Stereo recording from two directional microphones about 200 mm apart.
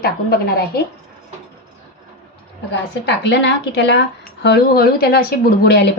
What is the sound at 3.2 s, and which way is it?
Speech, 60° left (ahead or behind).